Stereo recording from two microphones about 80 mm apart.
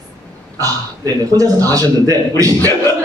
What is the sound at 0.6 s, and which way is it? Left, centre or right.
A man's voice, right.